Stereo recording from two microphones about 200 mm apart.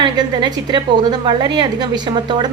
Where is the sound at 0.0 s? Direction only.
20° right (ahead or behind).